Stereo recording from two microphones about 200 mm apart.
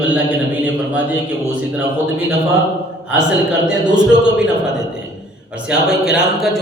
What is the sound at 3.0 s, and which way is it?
A man's voice, 5° right (ahead or behind).